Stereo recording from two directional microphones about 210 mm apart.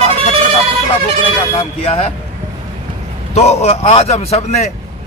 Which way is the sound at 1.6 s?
30° left (ahead or behind).